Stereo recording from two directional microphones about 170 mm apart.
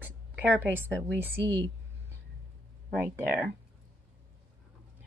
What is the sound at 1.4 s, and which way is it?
Speech, 15° left (ahead or behind).